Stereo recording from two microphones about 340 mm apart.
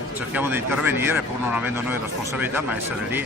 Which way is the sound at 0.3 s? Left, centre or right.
Centre.